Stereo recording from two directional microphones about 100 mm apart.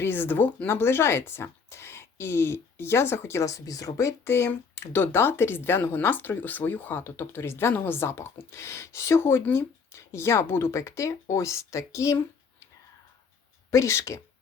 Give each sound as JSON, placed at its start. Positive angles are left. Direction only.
{"t": 0.0, "sound": "speech", "side_deg": 20}
{"t": 13.7, "sound": "speech", "side_deg": 30}